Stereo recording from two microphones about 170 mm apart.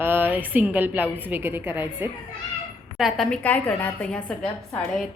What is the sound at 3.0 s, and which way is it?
A woman's voice, centre (ahead or behind).